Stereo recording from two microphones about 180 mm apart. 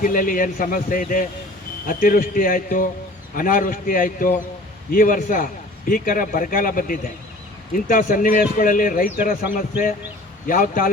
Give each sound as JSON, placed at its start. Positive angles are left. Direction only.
{"t": 0.0, "sound": "a man's voice", "side_deg": 50}